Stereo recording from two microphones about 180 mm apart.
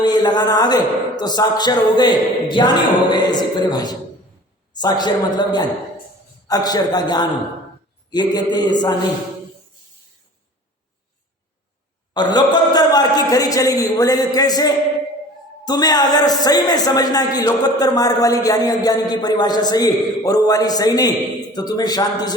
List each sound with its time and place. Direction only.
0.0 s speech: 20° left (ahead or behind)
12.1 s speech: 25° left (ahead or behind)